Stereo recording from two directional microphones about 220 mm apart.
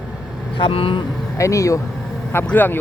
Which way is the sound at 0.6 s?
25° left (ahead or behind).